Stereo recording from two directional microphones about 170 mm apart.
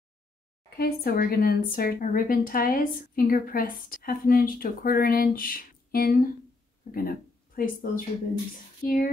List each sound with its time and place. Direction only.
0.7 s a woman's voice: 65° left (ahead or behind)